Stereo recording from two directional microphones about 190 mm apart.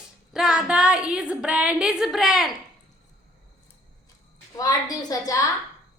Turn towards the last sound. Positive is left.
turn(degrees=20)  # may be behind; listen again after turning